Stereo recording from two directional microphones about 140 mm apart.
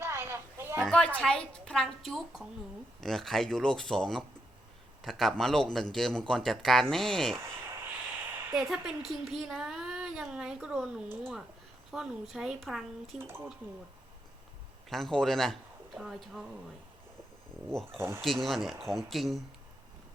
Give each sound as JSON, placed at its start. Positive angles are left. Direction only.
{"t": 0.0, "sound": "a sound", "side_deg": -15}
{"t": 0.8, "sound": "speech", "side_deg": 5}
{"t": 7.3, "sound": "speech", "side_deg": -15}
{"t": 8.3, "sound": "a sound", "side_deg": -15}
{"t": 8.5, "sound": "speech", "side_deg": 0}
{"t": 13.1, "sound": "speech", "side_deg": -15}
{"t": 14.8, "sound": "speech", "side_deg": 0}
{"t": 17.9, "sound": "speech", "side_deg": -20}
{"t": 18.2, "sound": "speech", "side_deg": 0}